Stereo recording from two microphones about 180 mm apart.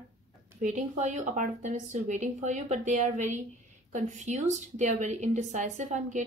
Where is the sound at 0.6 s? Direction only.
40° right (ahead or behind).